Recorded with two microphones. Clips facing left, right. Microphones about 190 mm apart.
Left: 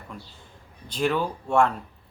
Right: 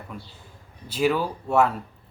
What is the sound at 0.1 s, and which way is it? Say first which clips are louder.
A man's voice: right 2 dB; 5° right (ahead or behind).